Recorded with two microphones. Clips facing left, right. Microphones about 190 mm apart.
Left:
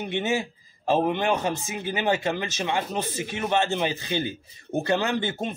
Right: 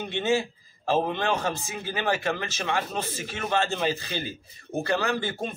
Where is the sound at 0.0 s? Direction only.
20° left (ahead or behind).